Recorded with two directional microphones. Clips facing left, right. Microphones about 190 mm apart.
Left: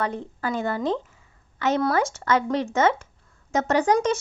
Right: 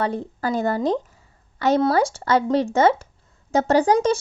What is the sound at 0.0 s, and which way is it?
A woman's voice, 35° right (ahead or behind).